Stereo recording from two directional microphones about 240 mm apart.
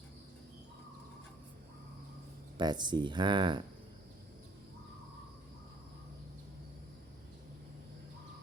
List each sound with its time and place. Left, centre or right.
2.6 s speech: centre